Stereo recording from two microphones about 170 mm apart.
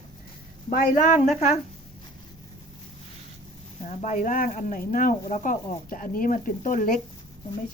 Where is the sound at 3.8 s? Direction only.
45° left (ahead or behind).